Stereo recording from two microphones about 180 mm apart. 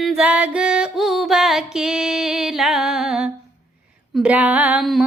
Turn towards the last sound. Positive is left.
turn(degrees=0)  # may be behind; listen again after turning